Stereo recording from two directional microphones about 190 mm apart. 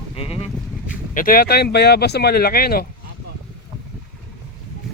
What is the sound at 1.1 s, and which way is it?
Speech, 50° left (ahead or behind).